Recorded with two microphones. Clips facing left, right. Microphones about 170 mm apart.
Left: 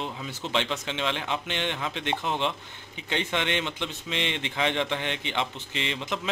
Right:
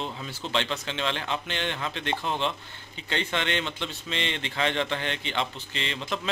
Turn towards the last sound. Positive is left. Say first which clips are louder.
# left 1 dB
turn(degrees=15)  # may be behind; listen again after turning